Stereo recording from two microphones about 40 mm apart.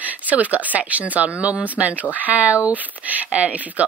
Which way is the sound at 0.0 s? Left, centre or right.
Right.